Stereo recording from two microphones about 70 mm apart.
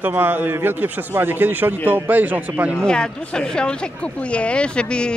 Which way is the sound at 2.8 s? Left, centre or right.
Centre.